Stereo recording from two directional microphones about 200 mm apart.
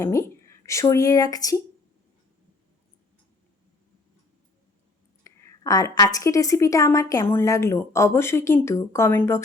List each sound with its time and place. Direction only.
0.0 s speech: 15° left (ahead or behind)
5.2 s a woman's voice: 15° left (ahead or behind)